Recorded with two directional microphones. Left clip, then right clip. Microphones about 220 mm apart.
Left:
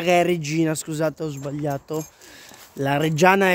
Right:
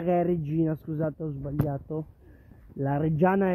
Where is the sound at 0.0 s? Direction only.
20° left (ahead or behind).